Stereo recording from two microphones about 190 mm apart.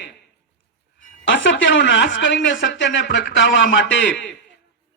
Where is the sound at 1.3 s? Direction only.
70° left (ahead or behind).